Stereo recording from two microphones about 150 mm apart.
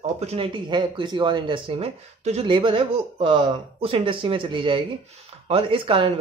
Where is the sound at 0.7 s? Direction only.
30° right (ahead or behind).